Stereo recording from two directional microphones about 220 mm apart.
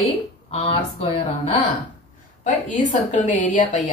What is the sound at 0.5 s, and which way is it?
Speech, 25° left (ahead or behind).